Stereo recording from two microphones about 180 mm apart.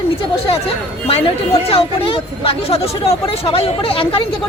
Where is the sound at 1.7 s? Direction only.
30° left (ahead or behind).